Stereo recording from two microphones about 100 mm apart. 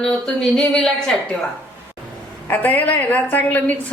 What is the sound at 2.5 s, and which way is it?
Speech, 15° left (ahead or behind).